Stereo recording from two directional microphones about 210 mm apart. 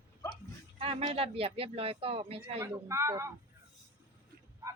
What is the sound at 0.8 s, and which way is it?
Speech, 25° right (ahead or behind).